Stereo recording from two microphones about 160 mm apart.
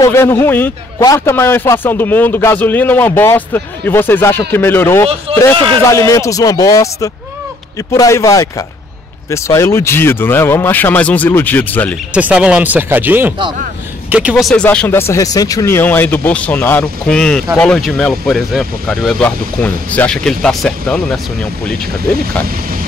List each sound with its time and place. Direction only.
0.0 s a man's voice: 15° left (ahead or behind)
5.3 s speech: 35° right (ahead or behind)
5.9 s a man's voice: 20° left (ahead or behind)
12.1 s a man's voice: 10° right (ahead or behind)